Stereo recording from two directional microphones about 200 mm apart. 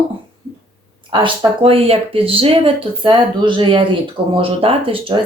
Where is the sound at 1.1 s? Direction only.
25° right (ahead or behind).